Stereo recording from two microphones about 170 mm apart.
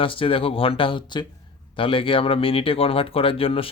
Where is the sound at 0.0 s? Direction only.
30° left (ahead or behind).